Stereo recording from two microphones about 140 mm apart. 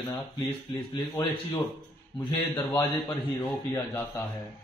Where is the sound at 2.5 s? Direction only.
30° left (ahead or behind).